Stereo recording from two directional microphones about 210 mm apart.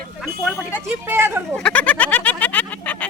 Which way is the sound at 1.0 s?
10° right (ahead or behind).